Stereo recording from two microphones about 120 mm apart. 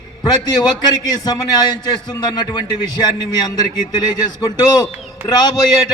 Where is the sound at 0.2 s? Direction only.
35° left (ahead or behind).